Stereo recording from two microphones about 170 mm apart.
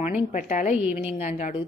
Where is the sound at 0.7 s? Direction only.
10° right (ahead or behind).